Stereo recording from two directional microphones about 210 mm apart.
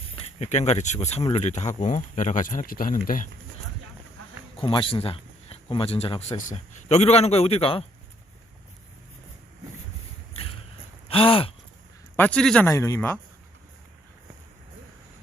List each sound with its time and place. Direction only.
0.3 s speech: 35° left (ahead or behind)
4.5 s speech: 25° left (ahead or behind)
11.1 s gasp: 25° left (ahead or behind)
12.1 s speech: 5° left (ahead or behind)